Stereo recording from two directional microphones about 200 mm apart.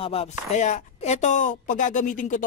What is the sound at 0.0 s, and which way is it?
Speech, 30° left (ahead or behind).